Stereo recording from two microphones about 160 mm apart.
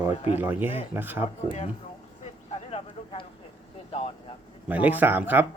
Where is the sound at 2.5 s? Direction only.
40° left (ahead or behind).